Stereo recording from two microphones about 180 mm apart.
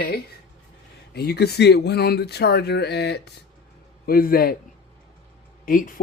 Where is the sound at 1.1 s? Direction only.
65° left (ahead or behind).